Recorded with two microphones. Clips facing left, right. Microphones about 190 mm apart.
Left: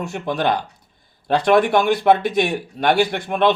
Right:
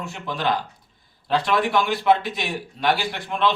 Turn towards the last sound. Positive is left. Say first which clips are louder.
# left 5 dB
turn(degrees=55)  # may be behind; listen again after turning